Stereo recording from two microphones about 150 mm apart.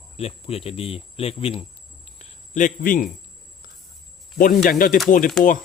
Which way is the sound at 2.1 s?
50° left (ahead or behind).